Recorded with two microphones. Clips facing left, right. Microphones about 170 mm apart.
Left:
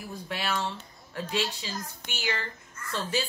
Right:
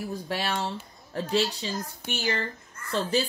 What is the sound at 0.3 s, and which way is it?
Speech, 35° right (ahead or behind).